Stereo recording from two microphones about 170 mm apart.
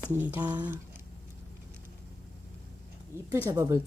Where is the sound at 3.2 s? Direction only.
20° right (ahead or behind).